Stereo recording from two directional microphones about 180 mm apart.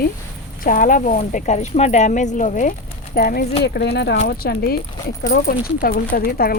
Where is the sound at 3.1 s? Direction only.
60° left (ahead or behind).